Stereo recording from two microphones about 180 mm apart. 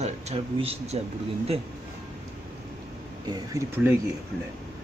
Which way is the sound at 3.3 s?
20° right (ahead or behind).